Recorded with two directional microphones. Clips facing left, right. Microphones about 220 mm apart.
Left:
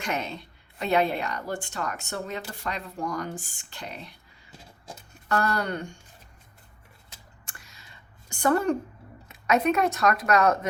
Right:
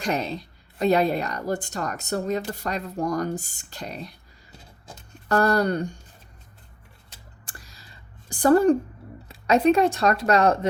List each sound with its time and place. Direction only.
0.0 s speech: 35° right (ahead or behind)
5.3 s speech: 40° right (ahead or behind)
7.4 s a sound: 35° right (ahead or behind)
9.3 s speech: 30° right (ahead or behind)